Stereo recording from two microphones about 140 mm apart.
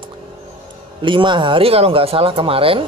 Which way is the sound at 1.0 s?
35° right (ahead or behind).